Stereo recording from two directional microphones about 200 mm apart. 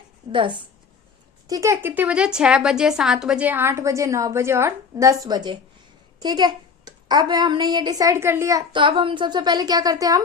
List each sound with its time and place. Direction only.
0.3 s a woman's voice: 25° right (ahead or behind)